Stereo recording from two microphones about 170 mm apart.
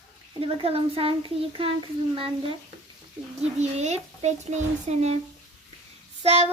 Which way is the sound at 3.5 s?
40° right (ahead or behind).